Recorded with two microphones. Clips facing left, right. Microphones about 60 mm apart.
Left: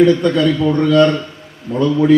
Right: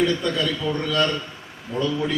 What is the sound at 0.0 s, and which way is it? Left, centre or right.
A man's voice, left.